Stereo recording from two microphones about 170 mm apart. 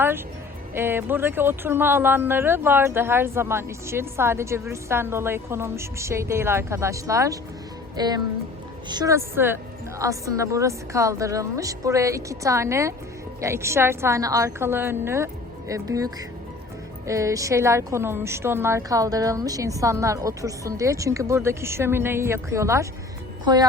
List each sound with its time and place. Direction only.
0.7 s a woman's voice: 15° right (ahead or behind)